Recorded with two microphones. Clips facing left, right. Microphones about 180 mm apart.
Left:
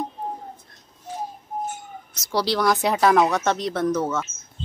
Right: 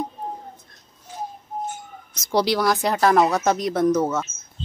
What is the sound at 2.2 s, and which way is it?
Speech, 15° right (ahead or behind).